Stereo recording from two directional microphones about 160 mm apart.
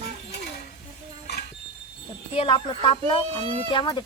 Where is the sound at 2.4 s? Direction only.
30° left (ahead or behind).